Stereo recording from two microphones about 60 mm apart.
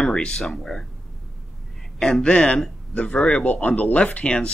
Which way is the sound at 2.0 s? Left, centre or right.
Centre.